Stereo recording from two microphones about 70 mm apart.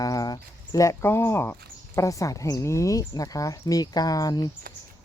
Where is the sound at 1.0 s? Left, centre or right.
Left.